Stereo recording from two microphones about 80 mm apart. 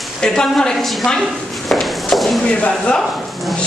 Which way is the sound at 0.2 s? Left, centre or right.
Centre.